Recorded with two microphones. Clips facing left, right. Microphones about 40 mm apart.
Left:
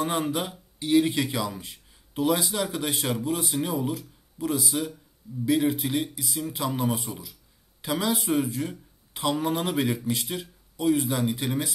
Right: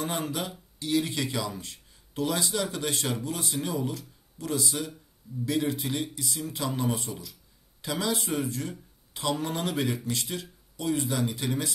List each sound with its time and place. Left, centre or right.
0.0 s speech: centre